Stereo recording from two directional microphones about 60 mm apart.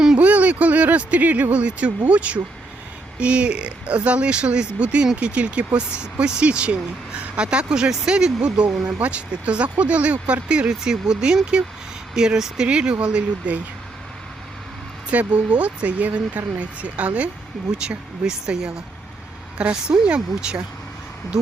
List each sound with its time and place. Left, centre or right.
0.2 s a sound: right
3.2 s speech: centre
15.1 s speech: right
17.7 s speech: centre